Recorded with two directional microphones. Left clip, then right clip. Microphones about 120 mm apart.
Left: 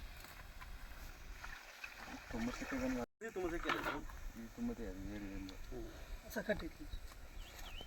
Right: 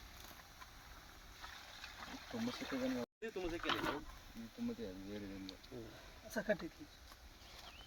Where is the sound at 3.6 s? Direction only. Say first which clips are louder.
Right 1 dB; 45° left (ahead or behind).